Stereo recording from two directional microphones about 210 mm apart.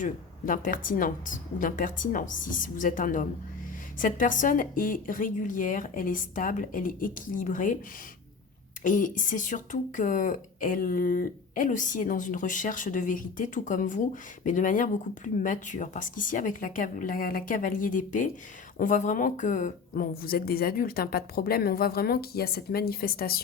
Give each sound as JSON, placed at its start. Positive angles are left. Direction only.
{"t": 0.0, "sound": "speech", "side_deg": 40}
{"t": 8.8, "sound": "speech", "side_deg": 40}